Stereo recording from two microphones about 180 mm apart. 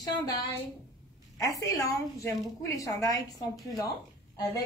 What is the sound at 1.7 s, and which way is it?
A woman's voice, 20° left (ahead or behind).